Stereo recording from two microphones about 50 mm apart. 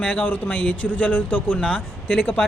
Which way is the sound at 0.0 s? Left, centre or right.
Left.